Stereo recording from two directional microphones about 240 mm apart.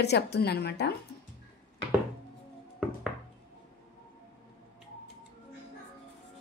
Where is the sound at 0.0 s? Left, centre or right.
Left.